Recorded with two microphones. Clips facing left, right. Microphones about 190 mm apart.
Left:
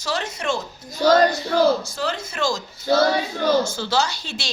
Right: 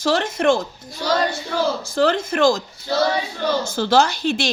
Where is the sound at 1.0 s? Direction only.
45° left (ahead or behind).